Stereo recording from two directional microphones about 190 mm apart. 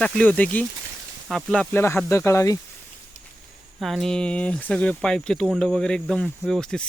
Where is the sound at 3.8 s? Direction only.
Centre (ahead or behind).